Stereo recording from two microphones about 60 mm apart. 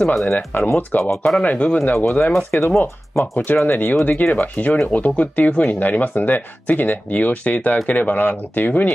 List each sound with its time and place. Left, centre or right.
0.1 s speech: centre
0.5 s speech: left
1.1 s speech: centre
1.4 s speech: left
2.0 s speech: left
2.5 s speech: left